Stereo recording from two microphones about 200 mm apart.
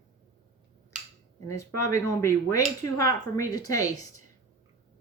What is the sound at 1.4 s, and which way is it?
Speech, 15° left (ahead or behind).